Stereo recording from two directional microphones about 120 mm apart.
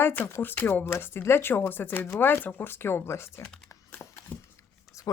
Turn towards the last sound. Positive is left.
turn(degrees=25)  # may be behind; listen again after turning